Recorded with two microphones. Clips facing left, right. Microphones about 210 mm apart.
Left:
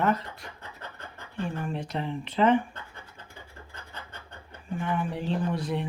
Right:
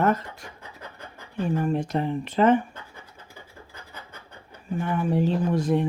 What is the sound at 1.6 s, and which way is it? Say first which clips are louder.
Speech: right 7 dB; 45° right (ahead or behind).